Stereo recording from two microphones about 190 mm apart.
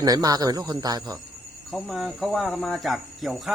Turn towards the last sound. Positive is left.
turn(degrees=0)  # may be behind; listen again after turning